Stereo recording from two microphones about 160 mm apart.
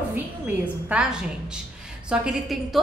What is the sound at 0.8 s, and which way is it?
A woman's voice, 5° right (ahead or behind).